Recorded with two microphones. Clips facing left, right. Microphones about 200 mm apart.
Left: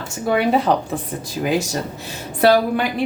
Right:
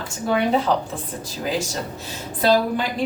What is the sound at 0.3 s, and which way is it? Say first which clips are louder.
Speech: left 2 dB; 65° left (ahead or behind).